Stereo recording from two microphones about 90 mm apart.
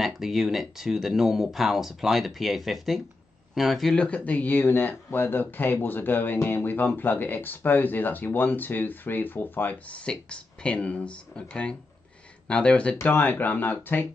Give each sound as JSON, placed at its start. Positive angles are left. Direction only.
{"t": 0.0, "sound": "speech", "side_deg": -5}